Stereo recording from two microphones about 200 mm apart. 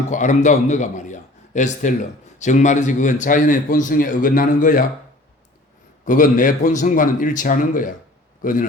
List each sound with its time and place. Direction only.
0.1 s a man's voice: 40° left (ahead or behind)
6.1 s a man's voice: 40° left (ahead or behind)